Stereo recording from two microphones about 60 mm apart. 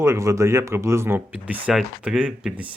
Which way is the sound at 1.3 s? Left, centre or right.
Right.